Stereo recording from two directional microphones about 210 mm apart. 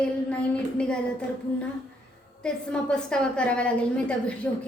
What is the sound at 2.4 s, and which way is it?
A woman's voice, 5° left (ahead or behind).